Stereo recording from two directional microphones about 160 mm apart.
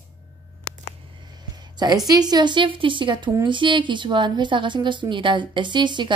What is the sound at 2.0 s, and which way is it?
Speech, 25° right (ahead or behind).